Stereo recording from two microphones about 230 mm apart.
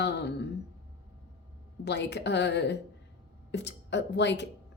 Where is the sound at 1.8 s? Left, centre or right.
Left.